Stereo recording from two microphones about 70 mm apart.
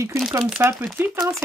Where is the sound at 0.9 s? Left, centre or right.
Right.